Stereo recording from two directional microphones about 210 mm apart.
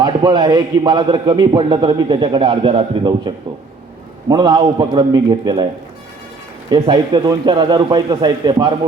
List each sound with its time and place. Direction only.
0.0 s a man's voice: 20° right (ahead or behind)
6.7 s a man's voice: 20° right (ahead or behind)